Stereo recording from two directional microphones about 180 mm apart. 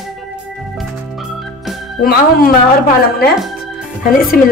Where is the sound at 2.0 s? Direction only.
55° left (ahead or behind).